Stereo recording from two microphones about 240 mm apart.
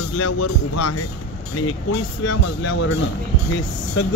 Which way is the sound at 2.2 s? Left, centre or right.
Left.